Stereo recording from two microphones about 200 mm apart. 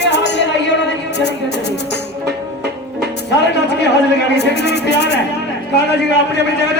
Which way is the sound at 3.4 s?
60° left (ahead or behind).